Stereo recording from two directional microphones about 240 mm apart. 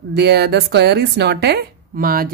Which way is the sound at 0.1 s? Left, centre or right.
Right.